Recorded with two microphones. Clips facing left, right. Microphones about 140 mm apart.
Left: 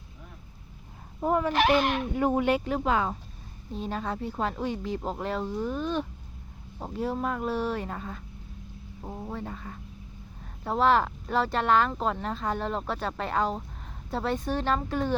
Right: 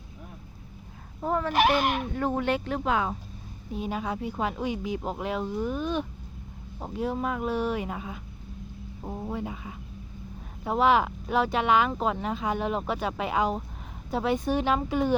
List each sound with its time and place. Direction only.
1.2 s speech: 10° left (ahead or behind)
1.5 s speech: 10° right (ahead or behind)
2.1 s speech: 10° left (ahead or behind)